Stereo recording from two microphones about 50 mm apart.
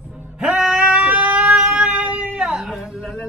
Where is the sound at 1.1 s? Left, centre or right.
Right.